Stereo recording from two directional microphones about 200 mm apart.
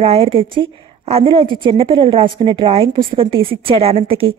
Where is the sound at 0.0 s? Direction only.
30° right (ahead or behind).